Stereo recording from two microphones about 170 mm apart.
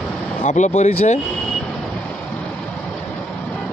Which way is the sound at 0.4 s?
45° left (ahead or behind).